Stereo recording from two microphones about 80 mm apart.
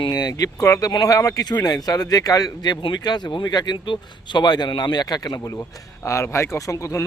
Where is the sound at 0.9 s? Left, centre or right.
Left.